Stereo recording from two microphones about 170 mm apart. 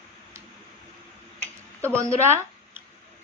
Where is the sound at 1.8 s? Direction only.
15° right (ahead or behind).